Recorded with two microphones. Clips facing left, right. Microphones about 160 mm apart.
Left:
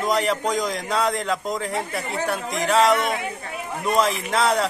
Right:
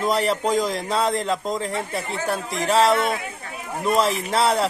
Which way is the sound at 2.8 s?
30° right (ahead or behind).